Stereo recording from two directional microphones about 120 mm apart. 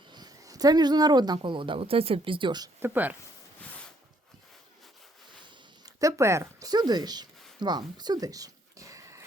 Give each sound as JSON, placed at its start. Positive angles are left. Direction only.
{"t": 0.1, "sound": "speech", "side_deg": -35}
{"t": 2.8, "sound": "speech", "side_deg": -15}
{"t": 5.8, "sound": "a sound", "side_deg": -25}